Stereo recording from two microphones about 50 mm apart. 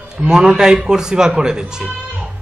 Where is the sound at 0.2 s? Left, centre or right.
Centre.